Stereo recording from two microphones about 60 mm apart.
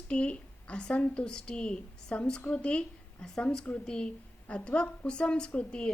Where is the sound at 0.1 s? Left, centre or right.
Centre.